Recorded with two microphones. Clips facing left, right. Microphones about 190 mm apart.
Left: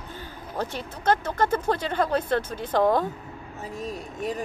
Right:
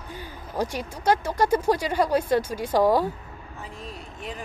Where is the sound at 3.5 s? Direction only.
45° left (ahead or behind).